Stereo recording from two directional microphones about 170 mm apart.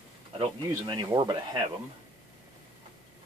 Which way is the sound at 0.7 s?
25° right (ahead or behind).